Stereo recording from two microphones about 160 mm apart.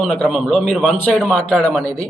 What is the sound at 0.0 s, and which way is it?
A man's voice, centre (ahead or behind).